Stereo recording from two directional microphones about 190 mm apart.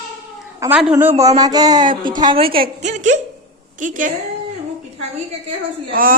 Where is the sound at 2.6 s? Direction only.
40° right (ahead or behind).